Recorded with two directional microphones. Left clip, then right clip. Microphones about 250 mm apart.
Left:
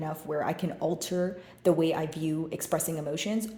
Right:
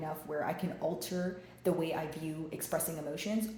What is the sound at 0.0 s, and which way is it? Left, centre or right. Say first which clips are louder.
A woman's voice: left 5 dB; left.